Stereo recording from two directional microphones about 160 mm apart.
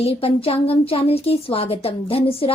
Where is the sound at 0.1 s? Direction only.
35° left (ahead or behind).